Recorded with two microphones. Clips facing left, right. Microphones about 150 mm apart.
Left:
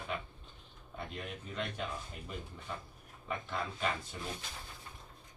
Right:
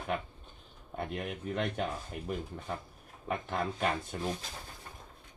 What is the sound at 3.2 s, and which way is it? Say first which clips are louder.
Speech: right 5 dB; 50° right (ahead or behind).